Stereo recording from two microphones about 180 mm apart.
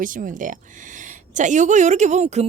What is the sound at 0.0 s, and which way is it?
A woman's voice, 45° right (ahead or behind).